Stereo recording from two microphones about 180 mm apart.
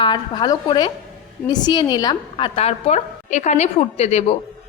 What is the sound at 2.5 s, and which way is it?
A woman's voice, 35° left (ahead or behind).